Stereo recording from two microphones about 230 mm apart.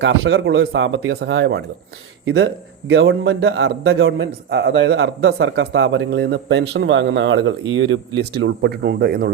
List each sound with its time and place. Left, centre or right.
0.0 s a man's voice: right